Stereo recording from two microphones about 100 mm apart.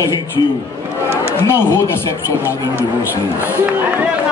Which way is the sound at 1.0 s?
25° left (ahead or behind).